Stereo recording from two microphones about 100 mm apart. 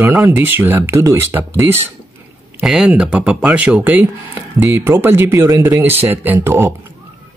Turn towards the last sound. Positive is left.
turn(degrees=-25)  # may be behind; listen again after turning